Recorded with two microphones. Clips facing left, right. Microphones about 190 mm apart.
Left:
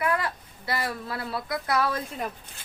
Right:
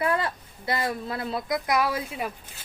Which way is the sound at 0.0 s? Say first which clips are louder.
Right 1 dB; 25° right (ahead or behind).